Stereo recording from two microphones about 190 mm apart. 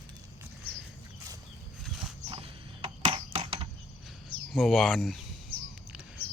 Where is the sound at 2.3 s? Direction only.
30° right (ahead or behind).